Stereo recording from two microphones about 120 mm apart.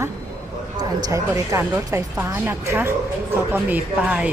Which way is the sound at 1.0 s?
30° right (ahead or behind).